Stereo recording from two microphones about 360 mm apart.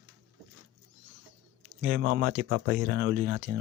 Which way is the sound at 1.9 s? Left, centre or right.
Right.